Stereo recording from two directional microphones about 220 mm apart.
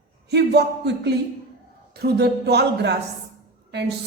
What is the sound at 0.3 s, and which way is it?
A woman's voice, 50° right (ahead or behind).